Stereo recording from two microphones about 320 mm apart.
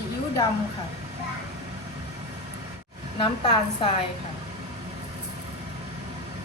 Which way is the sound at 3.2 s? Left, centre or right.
Centre.